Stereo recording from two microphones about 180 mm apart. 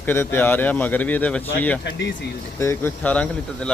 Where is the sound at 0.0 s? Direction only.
15° left (ahead or behind).